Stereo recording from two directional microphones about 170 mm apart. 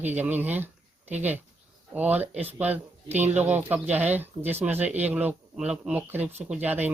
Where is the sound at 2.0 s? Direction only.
10° right (ahead or behind).